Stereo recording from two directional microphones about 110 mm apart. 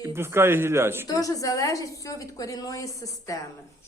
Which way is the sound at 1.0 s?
30° left (ahead or behind).